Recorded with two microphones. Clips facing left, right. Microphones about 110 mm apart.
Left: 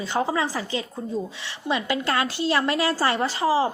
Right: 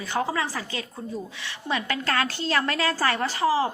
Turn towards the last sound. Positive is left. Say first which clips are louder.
# left 1 dB
turn(degrees=20)  # may be behind; listen again after turning